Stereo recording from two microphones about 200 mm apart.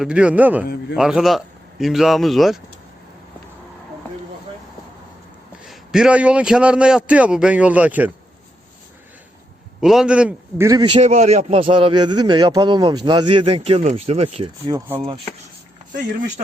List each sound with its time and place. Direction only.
0.0 s a man's voice: 5° right (ahead or behind)
5.6 s a man's voice: centre (ahead or behind)
9.8 s a man's voice: centre (ahead or behind); by 10.9 s 15° right (ahead or behind)
10.9 s a man's voice: 35° right (ahead or behind)